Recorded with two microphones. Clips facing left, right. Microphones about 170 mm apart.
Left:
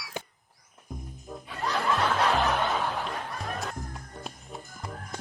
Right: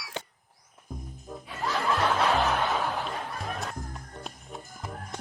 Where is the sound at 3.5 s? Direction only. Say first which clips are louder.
Even; centre (ahead or behind).